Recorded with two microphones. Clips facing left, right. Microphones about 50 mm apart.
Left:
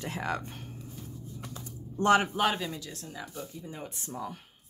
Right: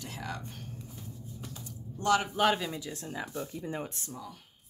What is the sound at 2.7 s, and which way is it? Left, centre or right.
Speech, centre.